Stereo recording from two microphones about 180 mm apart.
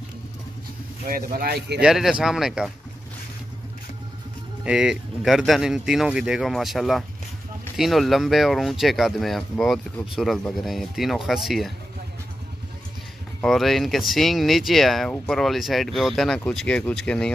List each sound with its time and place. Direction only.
1.0 s speech: 55° right (ahead or behind)
1.8 s speech: 5° right (ahead or behind)
4.6 s speech: 5° right (ahead or behind)
13.4 s speech: centre (ahead or behind)